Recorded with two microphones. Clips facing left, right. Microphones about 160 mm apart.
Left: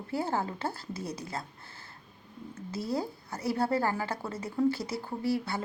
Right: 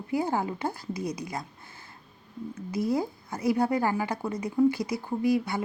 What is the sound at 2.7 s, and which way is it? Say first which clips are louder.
Speech: right 5 dB; 15° right (ahead or behind).